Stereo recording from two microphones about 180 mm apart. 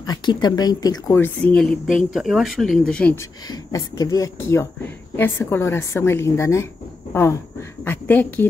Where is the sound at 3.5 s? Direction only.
20° left (ahead or behind).